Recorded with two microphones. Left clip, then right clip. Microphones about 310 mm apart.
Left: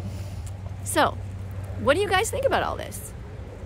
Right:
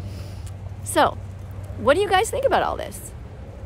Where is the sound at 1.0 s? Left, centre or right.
Centre.